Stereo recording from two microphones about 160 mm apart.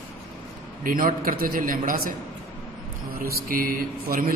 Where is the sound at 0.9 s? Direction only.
60° right (ahead or behind).